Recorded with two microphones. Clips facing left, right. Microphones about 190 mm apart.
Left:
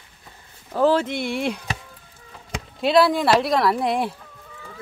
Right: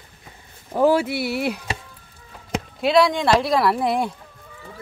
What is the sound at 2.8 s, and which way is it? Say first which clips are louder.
Speech: even; centre (ahead or behind).